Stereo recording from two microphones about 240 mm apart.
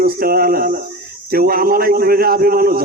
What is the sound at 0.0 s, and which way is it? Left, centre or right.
Speech, right.